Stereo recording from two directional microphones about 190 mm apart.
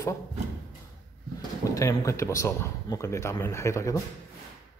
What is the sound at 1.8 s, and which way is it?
Speech, 15° left (ahead or behind).